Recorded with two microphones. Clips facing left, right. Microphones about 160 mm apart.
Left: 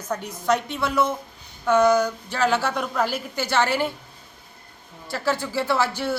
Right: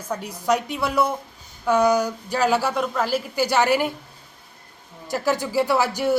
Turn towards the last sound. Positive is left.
turn(degrees=-15)  # may be behind; listen again after turning